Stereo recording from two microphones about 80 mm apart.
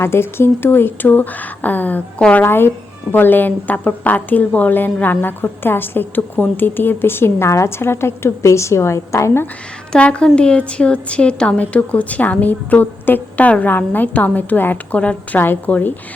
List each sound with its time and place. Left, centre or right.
0.0 s a woman's voice: left
9.9 s a woman's voice: centre